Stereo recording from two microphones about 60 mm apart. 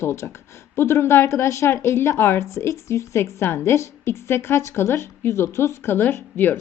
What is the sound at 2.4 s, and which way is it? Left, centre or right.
A woman's voice, left.